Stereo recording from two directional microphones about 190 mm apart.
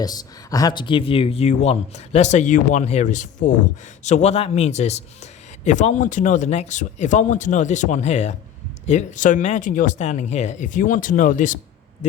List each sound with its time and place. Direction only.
0.0 s a man's voice: 20° left (ahead or behind); by 11.6 s 40° left (ahead or behind)